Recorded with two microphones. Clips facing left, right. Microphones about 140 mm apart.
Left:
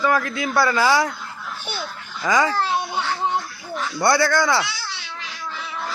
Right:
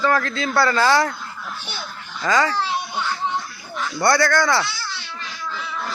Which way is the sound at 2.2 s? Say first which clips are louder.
Even; 20° left (ahead or behind).